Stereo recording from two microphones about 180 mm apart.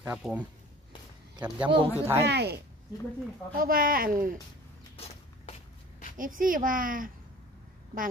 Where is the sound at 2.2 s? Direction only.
65° right (ahead or behind).